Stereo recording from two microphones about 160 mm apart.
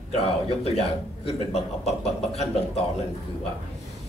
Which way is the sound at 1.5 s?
40° left (ahead or behind).